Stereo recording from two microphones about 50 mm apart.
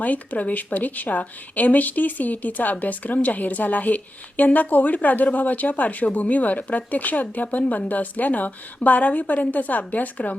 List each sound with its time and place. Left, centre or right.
0.0 s speech: left